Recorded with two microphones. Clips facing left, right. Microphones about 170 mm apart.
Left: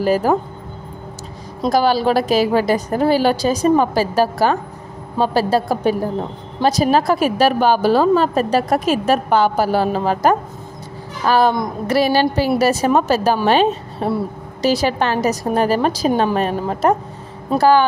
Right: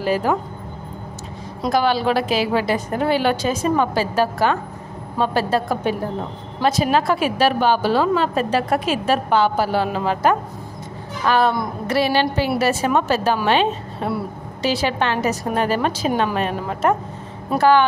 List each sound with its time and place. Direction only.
0.0 s a woman's voice: 40° left (ahead or behind)
1.6 s a woman's voice: 35° left (ahead or behind)